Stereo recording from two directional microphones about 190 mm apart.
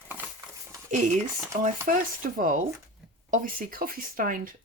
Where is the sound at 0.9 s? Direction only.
40° right (ahead or behind).